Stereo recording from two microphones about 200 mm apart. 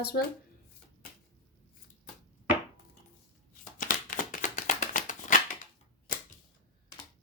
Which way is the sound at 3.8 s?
40° left (ahead or behind).